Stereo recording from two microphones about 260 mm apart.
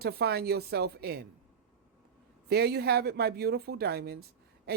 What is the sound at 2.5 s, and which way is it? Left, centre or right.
Speech, right.